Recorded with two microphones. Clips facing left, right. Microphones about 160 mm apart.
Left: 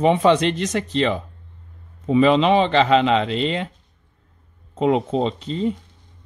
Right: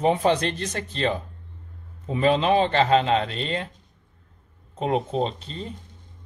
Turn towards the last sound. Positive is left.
turn(degrees=90)